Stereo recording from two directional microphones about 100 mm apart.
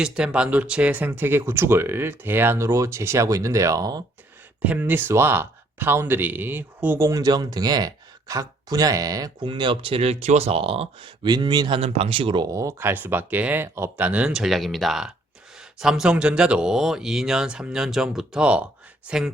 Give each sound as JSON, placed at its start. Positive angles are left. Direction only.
{"t": 0.0, "sound": "speech", "side_deg": -10}
{"t": 4.6, "sound": "speech", "side_deg": -15}
{"t": 7.1, "sound": "speech", "side_deg": -40}
{"t": 9.5, "sound": "speech", "side_deg": -55}
{"t": 11.3, "sound": "speech", "side_deg": -45}
{"t": 11.8, "sound": "speech", "side_deg": -70}
{"t": 12.5, "sound": "speech", "side_deg": -30}
{"t": 12.9, "sound": "speech", "side_deg": -20}